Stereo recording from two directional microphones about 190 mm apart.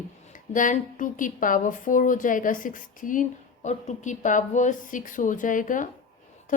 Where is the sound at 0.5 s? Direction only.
45° left (ahead or behind).